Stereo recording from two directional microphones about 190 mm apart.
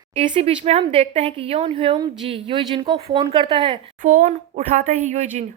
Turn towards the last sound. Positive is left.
turn(degrees=-40)  # may be behind; listen again after turning